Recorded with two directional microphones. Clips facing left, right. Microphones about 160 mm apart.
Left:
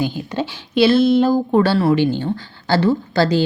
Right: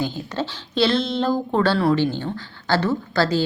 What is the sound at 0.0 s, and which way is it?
A woman's voice, 10° left (ahead or behind).